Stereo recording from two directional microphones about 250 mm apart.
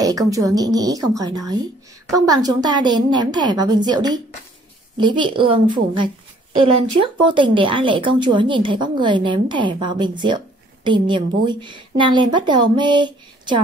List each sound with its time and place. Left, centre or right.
0.0 s a woman's voice: centre